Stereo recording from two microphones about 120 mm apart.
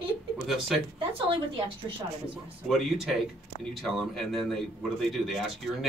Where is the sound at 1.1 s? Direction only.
45° right (ahead or behind).